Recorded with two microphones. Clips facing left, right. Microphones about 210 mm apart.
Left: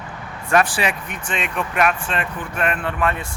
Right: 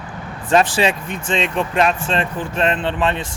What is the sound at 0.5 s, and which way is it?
Speech, 25° right (ahead or behind).